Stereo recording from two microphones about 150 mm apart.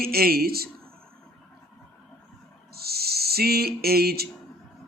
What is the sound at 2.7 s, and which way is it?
Owl, 90° right.